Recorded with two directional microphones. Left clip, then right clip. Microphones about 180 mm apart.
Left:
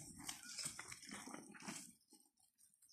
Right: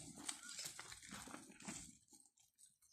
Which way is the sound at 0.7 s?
10° left (ahead or behind).